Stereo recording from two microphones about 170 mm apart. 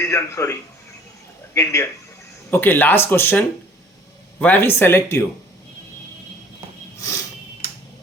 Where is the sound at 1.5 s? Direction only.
15° left (ahead or behind).